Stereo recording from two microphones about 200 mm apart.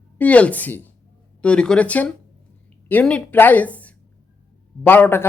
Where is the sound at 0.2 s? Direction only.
5° left (ahead or behind).